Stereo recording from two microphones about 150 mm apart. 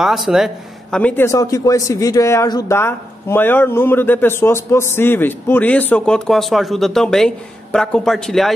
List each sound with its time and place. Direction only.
0.0 s speech: centre (ahead or behind)
0.9 s a man's voice: 10° left (ahead or behind)